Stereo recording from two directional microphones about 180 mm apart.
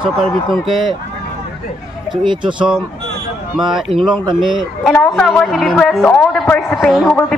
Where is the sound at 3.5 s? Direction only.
Centre (ahead or behind).